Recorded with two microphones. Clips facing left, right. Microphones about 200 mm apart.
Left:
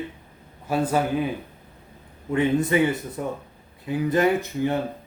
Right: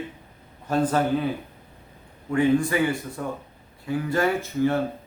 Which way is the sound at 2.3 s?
20° left (ahead or behind).